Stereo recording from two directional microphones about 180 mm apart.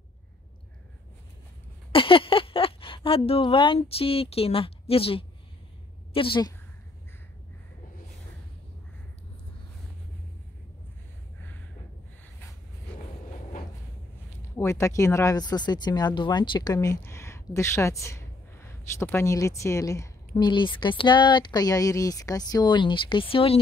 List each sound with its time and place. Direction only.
1.9 s speech: 30° left (ahead or behind)
14.6 s speech: 15° left (ahead or behind); by 23.6 s 30° left (ahead or behind)